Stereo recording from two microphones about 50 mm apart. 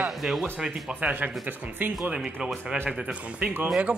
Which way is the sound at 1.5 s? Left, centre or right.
Right.